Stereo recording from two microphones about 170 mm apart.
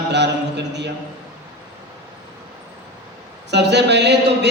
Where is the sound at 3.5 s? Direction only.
90° right.